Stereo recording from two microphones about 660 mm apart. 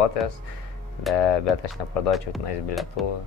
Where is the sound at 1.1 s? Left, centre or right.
Left.